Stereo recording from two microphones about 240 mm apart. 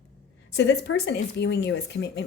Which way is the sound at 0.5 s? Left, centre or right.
Left.